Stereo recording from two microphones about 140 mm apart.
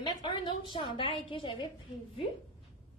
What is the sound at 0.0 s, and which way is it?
A woman's voice, 35° left (ahead or behind).